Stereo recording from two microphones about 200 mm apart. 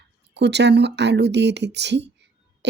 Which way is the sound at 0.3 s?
60° right (ahead or behind).